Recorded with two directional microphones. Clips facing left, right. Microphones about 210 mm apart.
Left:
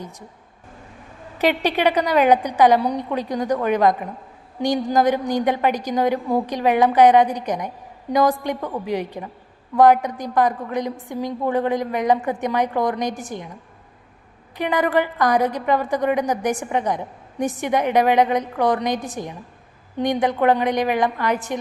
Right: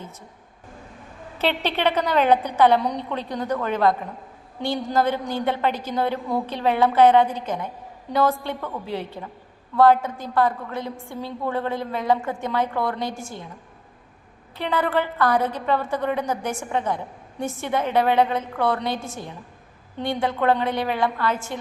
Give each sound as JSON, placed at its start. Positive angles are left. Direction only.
{"t": 1.4, "sound": "a woman's voice", "side_deg": 15}
{"t": 14.6, "sound": "a woman's voice", "side_deg": 15}